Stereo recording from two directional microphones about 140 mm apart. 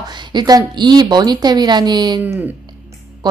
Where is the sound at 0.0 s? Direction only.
30° right (ahead or behind).